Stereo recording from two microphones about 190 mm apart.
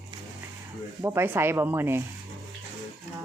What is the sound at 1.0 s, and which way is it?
Speech, 15° right (ahead or behind).